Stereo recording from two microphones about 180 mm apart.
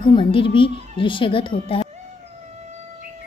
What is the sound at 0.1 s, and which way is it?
Speech, 30° left (ahead or behind).